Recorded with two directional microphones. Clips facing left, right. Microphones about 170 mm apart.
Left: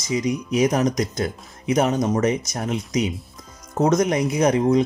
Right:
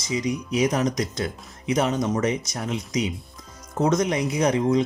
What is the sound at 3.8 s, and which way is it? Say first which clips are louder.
Speech: left 3 dB; 45° left (ahead or behind).